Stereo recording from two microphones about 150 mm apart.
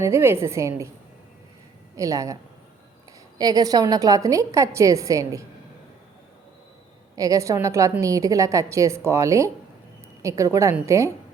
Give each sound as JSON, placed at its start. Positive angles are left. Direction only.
{"t": 0.0, "sound": "a woman's voice", "side_deg": -15}
{"t": 2.0, "sound": "a woman's voice", "side_deg": -20}
{"t": 7.2, "sound": "a woman's voice", "side_deg": -20}